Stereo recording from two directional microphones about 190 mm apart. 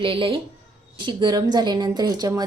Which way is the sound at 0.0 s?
30° right (ahead or behind).